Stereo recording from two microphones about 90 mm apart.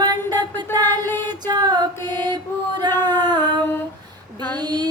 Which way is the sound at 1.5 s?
50° right (ahead or behind).